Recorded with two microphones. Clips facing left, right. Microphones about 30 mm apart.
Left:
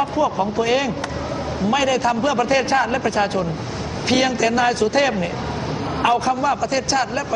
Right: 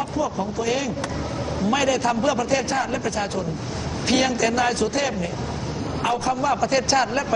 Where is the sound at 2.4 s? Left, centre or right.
Left.